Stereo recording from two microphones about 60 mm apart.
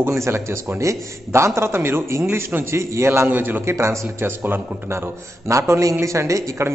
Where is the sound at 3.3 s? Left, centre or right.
Right.